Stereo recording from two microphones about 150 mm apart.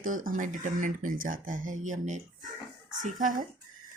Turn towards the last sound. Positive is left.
turn(degrees=-60)  # may be behind; listen again after turning